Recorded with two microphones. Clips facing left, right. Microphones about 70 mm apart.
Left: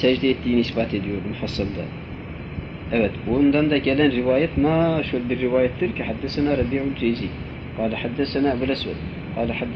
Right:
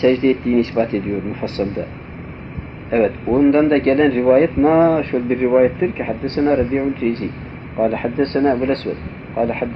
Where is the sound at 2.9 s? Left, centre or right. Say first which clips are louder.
Right 5 dB; right.